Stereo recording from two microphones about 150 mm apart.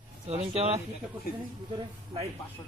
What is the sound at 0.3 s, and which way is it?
Speech, 45° right (ahead or behind).